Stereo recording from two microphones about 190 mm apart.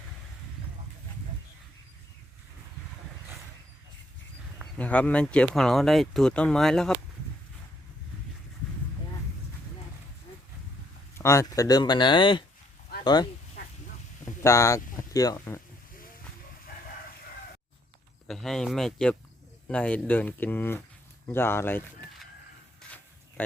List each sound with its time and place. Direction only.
4.8 s speech: 5° left (ahead or behind)
11.2 s speech: 15° left (ahead or behind)
14.4 s speech: 15° left (ahead or behind)
18.3 s speech: centre (ahead or behind)